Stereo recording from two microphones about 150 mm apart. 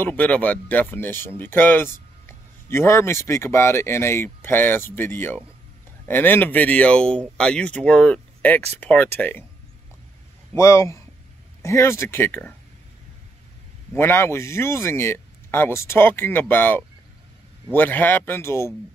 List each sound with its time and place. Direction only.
0.0 s speech: 10° left (ahead or behind)
10.5 s speech: 20° left (ahead or behind)
13.9 s speech: 15° left (ahead or behind)